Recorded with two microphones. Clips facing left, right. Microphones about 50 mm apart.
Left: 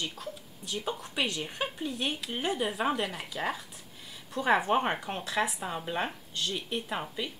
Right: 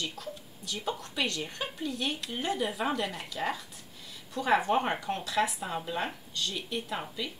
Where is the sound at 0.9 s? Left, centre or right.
Centre.